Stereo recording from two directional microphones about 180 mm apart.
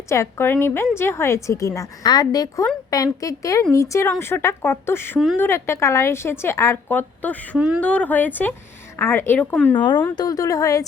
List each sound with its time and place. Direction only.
0.1 s a woman's voice: 15° left (ahead or behind)
9.7 s a woman's voice: 25° left (ahead or behind)